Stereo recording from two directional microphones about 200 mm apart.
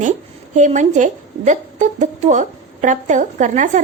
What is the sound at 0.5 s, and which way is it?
A woman's voice, 40° right (ahead or behind).